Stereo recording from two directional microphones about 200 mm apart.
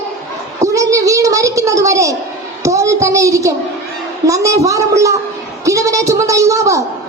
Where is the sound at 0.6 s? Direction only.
15° right (ahead or behind).